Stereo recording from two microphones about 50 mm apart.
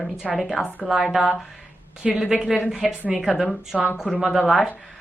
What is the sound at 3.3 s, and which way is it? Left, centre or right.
Speech, centre.